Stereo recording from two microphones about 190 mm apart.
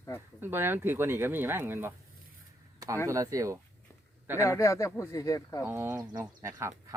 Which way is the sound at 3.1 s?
15° right (ahead or behind).